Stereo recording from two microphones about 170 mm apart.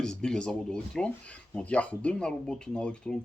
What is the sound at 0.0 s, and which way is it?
Speech, 5° left (ahead or behind).